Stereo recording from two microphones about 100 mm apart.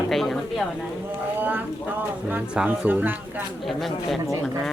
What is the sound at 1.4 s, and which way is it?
Speech, 20° right (ahead or behind).